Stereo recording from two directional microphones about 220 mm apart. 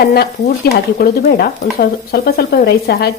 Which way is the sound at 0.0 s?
45° left (ahead or behind).